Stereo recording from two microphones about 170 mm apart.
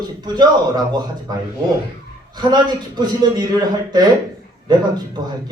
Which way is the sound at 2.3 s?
25° right (ahead or behind).